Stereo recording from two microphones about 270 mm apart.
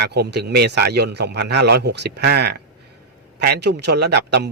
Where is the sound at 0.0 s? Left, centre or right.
Right.